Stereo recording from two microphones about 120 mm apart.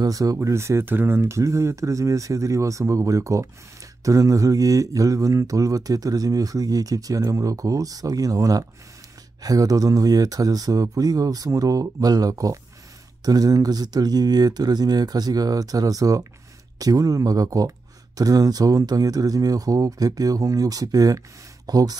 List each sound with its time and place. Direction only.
0.0 s speech: 30° right (ahead or behind)